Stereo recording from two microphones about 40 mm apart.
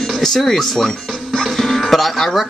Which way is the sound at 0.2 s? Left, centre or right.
Centre.